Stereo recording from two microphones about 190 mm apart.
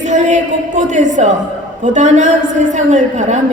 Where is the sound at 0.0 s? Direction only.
40° right (ahead or behind).